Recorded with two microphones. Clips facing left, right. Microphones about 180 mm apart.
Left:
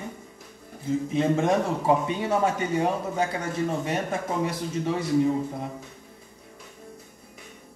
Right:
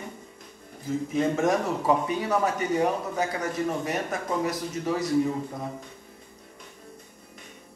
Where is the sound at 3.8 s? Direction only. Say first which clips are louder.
Left 2 dB; 30° left (ahead or behind).